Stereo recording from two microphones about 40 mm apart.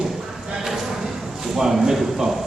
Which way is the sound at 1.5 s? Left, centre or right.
Centre.